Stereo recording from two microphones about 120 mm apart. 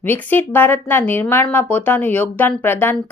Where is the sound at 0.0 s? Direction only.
15° left (ahead or behind).